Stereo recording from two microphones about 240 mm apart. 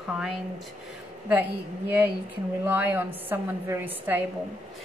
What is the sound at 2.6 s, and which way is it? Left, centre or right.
A woman's voice, centre.